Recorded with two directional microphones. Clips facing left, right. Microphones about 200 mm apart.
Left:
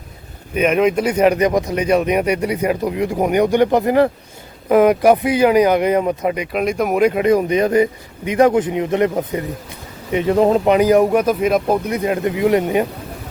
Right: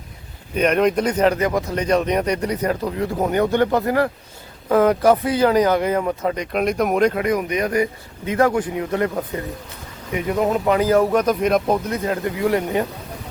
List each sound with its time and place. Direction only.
0.5 s speech: 5° left (ahead or behind)
6.3 s speech: 5° left (ahead or behind)
7.2 s a man's voice: 30° left (ahead or behind)
10.8 s speech: 15° left (ahead or behind)
11.9 s a man's voice: 15° left (ahead or behind)